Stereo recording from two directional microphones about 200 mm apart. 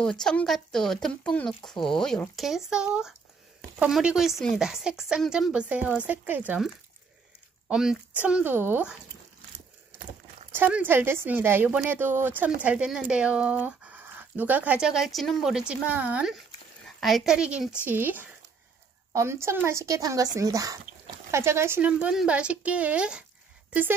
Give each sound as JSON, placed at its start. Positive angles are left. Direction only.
{"t": 0.0, "sound": "a woman's voice", "side_deg": 5}
{"t": 10.5, "sound": "a woman's voice", "side_deg": -10}